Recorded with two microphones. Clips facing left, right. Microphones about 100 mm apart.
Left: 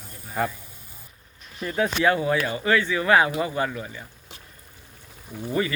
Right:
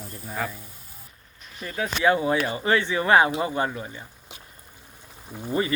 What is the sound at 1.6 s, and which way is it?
Speech, 25° left (ahead or behind).